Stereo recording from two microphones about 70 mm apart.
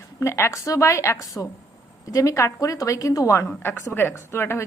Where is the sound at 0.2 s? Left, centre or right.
Left.